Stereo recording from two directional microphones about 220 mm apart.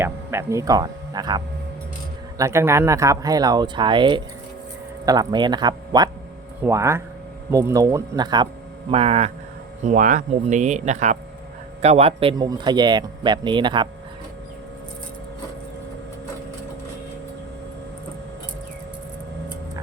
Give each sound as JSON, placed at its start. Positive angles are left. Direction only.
{"t": 0.0, "sound": "speech", "side_deg": -10}
{"t": 2.4, "sound": "speech", "side_deg": -10}